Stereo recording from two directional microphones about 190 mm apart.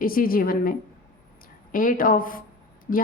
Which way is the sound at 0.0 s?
50° left (ahead or behind).